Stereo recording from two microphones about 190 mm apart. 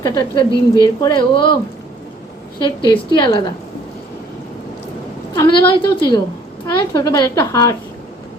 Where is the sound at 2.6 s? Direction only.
25° left (ahead or behind).